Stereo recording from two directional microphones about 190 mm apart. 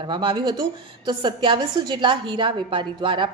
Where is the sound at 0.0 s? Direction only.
25° right (ahead or behind).